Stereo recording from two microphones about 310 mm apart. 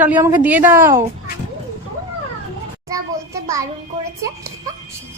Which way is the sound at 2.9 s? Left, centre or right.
Centre.